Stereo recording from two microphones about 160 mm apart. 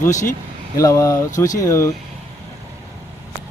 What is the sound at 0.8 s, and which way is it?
A man's voice, 20° left (ahead or behind).